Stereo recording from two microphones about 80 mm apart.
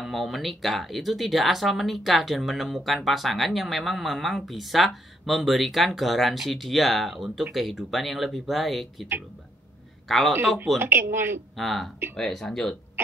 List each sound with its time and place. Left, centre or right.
0.0 s speech: centre
10.0 s speech: centre
10.8 s speech: right
11.5 s speech: centre